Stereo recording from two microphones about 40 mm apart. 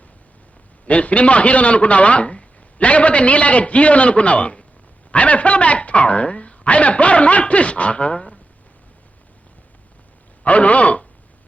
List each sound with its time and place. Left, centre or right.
0.9 s a man's voice: left
10.4 s a man's voice: left